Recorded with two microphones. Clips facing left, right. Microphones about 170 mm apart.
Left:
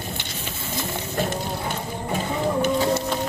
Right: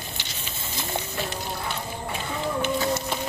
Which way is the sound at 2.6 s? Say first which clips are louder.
Left 4 dB; 30° left (ahead or behind).